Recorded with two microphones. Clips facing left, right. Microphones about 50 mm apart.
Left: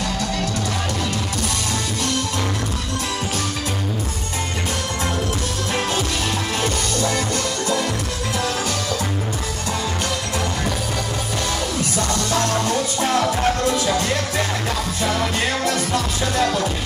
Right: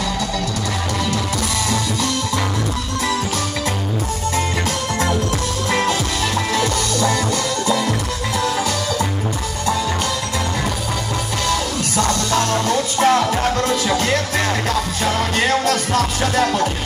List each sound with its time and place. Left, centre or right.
12.6 s music: right
13.7 s music: right